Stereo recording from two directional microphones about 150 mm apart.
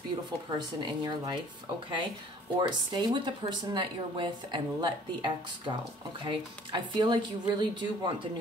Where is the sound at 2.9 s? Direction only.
30° right (ahead or behind).